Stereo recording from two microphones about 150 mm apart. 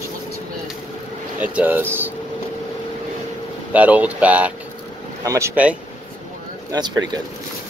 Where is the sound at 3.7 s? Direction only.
10° right (ahead or behind).